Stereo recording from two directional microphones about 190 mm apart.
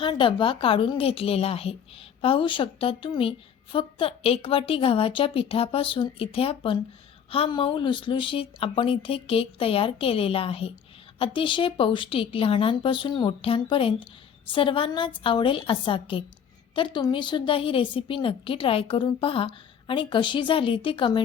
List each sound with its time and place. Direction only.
0.0 s a woman's voice: 25° left (ahead or behind)